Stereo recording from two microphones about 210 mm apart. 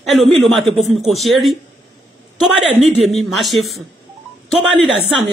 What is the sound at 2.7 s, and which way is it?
Speech, 30° right (ahead or behind).